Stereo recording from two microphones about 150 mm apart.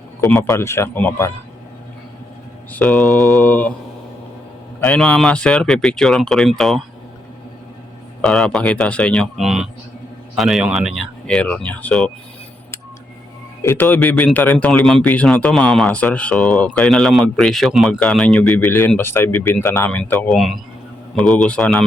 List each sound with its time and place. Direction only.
0.3 s speech: 20° left (ahead or behind)
2.7 s speech: 5° left (ahead or behind)
4.8 s speech: 5° left (ahead or behind)
8.2 s speech: 5° left (ahead or behind)
13.6 s speech: 15° left (ahead or behind)
20.3 s speech: centre (ahead or behind)